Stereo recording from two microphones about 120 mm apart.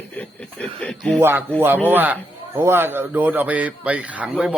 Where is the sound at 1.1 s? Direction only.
20° right (ahead or behind).